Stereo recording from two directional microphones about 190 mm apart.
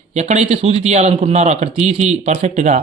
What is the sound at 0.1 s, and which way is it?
Speech, 35° right (ahead or behind).